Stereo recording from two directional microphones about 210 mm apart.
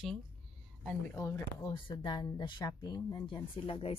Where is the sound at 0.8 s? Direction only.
15° left (ahead or behind).